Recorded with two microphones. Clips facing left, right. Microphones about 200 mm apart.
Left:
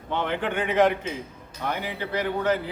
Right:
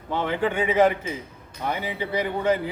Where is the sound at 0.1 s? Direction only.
10° right (ahead or behind).